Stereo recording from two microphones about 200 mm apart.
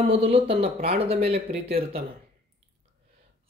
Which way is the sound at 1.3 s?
50° right (ahead or behind).